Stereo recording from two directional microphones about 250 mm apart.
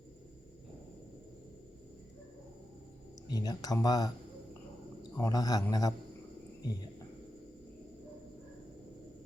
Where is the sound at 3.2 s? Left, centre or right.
Centre.